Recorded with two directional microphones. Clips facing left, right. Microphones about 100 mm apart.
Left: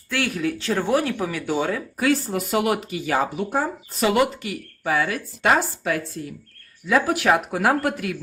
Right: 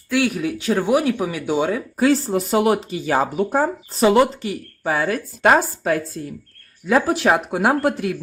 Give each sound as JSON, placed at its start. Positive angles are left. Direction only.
{"t": 0.1, "sound": "speech", "side_deg": -15}
{"t": 2.0, "sound": "speech", "side_deg": -30}